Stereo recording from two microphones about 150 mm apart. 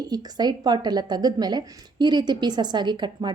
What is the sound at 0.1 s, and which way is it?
A woman's voice, 25° right (ahead or behind).